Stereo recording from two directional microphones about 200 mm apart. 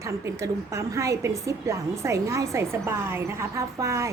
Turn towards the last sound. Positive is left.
turn(degrees=-15)  # may be behind; listen again after turning